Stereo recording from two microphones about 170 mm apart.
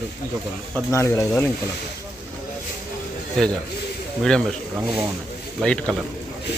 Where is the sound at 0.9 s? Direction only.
15° left (ahead or behind).